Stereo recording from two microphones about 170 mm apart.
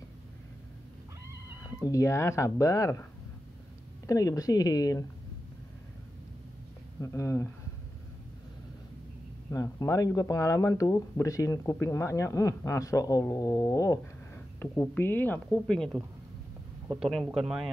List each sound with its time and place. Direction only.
1.6 s speech: 20° left (ahead or behind)
4.1 s speech: 20° left (ahead or behind)
7.0 s a woman's voice: 20° left (ahead or behind)
9.5 s a woman's voice: 20° left (ahead or behind); by 17.6 s centre (ahead or behind)